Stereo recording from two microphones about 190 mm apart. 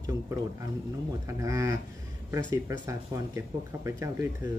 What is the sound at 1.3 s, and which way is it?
Speech, 15° right (ahead or behind).